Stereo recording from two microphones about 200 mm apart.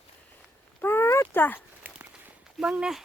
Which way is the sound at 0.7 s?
10° left (ahead or behind).